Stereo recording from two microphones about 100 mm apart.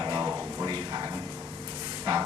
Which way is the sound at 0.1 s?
35° right (ahead or behind).